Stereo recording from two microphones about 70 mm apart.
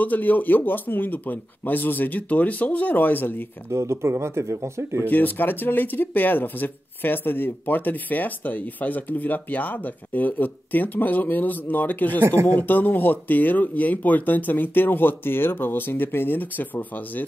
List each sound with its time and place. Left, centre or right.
0.0 s speech: left
3.7 s speech: right
5.1 s speech: left